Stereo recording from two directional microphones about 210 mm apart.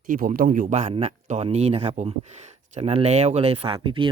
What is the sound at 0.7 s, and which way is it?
Speech, 30° right (ahead or behind).